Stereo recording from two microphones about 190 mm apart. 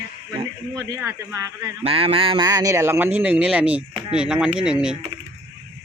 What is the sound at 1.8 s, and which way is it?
Speech, 30° right (ahead or behind).